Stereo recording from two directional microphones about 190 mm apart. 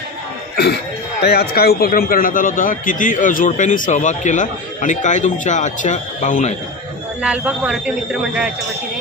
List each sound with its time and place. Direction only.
1.2 s a man's voice: 55° left (ahead or behind); by 6.5 s 40° left (ahead or behind)
7.2 s speech: 5° right (ahead or behind)